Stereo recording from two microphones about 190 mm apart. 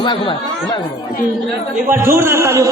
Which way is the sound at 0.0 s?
25° left (ahead or behind).